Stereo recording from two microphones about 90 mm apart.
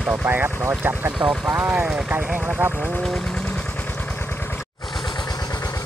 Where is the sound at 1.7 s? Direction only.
10° right (ahead or behind).